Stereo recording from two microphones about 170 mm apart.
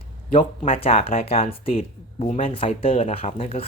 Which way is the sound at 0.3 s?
35° left (ahead or behind).